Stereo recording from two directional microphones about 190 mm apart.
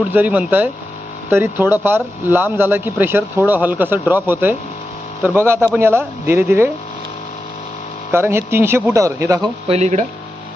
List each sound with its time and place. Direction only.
0.1 s speech: 10° right (ahead or behind)
8.1 s speech: 10° right (ahead or behind)
9.6 s speech: 35° right (ahead or behind)